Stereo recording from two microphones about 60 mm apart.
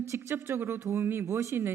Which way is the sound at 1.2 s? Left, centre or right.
Right.